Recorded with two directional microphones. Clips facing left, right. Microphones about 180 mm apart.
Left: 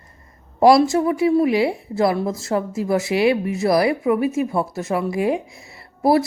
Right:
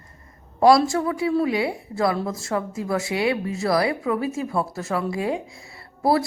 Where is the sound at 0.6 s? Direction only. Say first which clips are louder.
Left 3 dB; 20° left (ahead or behind).